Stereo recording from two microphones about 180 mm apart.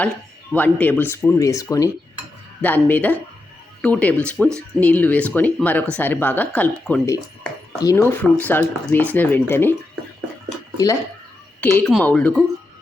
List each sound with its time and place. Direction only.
0.5 s speech: 10° left (ahead or behind)
10.8 s speech: 20° left (ahead or behind)
11.6 s speech: 10° left (ahead or behind)